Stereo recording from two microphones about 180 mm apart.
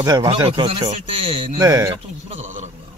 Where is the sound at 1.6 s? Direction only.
20° right (ahead or behind).